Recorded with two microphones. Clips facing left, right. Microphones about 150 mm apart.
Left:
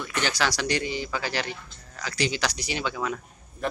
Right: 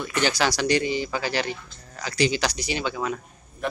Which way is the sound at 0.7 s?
10° right (ahead or behind).